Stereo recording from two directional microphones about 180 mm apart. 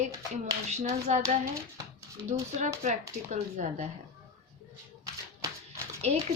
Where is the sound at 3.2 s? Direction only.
40° right (ahead or behind).